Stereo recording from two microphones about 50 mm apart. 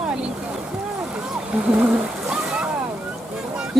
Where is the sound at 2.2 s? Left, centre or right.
Centre.